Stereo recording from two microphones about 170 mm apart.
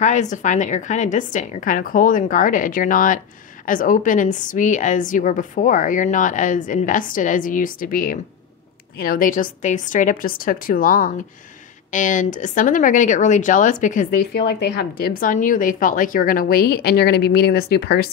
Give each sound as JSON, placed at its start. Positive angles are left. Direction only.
{"t": 0.0, "sound": "a woman's voice", "side_deg": 45}
{"t": 14.3, "sound": "speech", "side_deg": 80}